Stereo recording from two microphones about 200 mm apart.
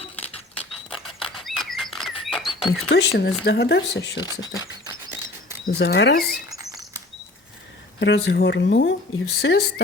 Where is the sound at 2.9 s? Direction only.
55° left (ahead or behind).